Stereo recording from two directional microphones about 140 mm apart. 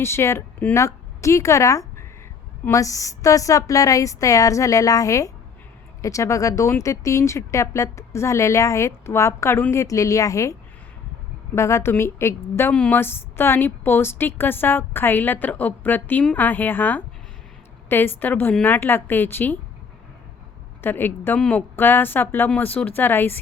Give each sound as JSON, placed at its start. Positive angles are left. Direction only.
{"t": 0.0, "sound": "a woman's voice", "side_deg": 20}
{"t": 20.8, "sound": "a woman's voice", "side_deg": 15}